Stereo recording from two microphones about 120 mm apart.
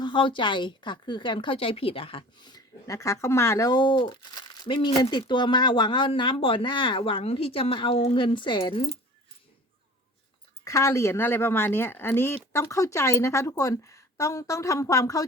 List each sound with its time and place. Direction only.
0.0 s a woman's voice: 40° left (ahead or behind); by 3.7 s 25° left (ahead or behind)
3.7 s a woman's voice: 40° left (ahead or behind)
10.6 s a woman's voice: 25° left (ahead or behind)